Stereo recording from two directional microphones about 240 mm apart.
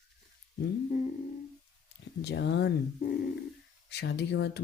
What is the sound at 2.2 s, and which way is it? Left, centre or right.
Speech, left.